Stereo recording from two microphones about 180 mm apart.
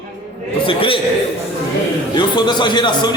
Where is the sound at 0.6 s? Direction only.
30° left (ahead or behind).